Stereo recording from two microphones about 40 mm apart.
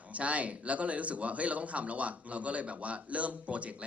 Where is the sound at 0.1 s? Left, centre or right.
Right.